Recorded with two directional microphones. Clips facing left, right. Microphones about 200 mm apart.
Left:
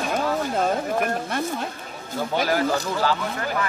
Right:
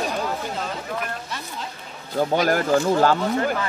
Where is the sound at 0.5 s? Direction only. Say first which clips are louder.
Left 7 dB; 50° left (ahead or behind).